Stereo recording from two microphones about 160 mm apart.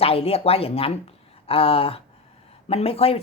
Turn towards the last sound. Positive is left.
turn(degrees=35)  # may be behind; listen again after turning